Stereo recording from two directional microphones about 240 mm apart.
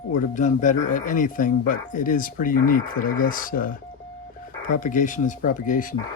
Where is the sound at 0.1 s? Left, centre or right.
Left.